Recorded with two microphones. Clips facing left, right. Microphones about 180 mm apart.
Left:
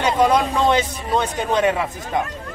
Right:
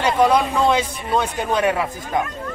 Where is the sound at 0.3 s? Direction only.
5° right (ahead or behind).